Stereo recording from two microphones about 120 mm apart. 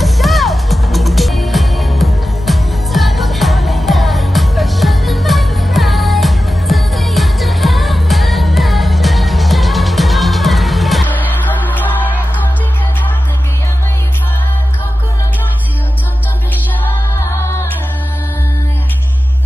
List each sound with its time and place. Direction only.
0.0 s music: centre (ahead or behind)
11.1 s music: 15° left (ahead or behind)
17.2 s music: 25° left (ahead or behind)